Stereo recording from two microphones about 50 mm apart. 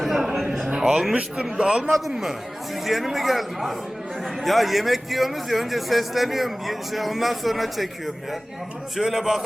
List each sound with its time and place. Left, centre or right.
0.0 s a sound: centre
0.7 s speech: centre
1.5 s a man's voice: centre
1.8 s a man's voice: centre